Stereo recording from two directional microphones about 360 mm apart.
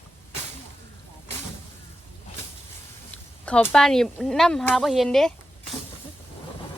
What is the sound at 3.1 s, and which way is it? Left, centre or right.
Speech, centre.